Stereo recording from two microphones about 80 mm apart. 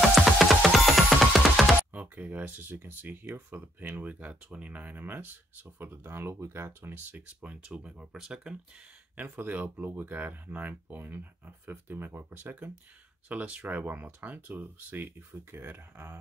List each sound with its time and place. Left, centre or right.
0.1 s music: centre
1.9 s speech: centre
7.1 s speech: centre
9.1 s speech: right